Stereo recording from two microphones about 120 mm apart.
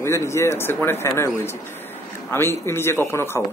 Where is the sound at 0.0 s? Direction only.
25° left (ahead or behind).